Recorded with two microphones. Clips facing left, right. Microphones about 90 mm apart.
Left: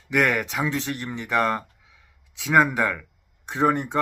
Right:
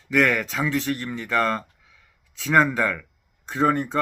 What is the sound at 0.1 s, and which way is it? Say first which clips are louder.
Speech: right 1 dB; 20° left (ahead or behind).